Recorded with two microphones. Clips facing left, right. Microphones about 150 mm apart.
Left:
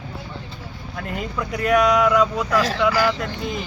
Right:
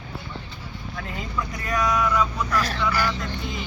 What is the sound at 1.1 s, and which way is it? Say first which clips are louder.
Speech: left 5 dB; 65° left (ahead or behind).